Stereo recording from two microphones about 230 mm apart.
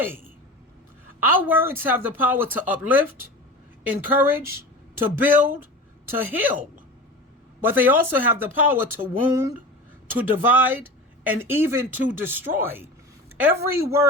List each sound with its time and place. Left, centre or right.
1.2 s speech: centre
7.6 s speech: centre